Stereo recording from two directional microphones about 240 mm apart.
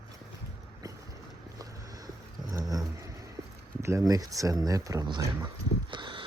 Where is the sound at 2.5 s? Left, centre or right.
Centre.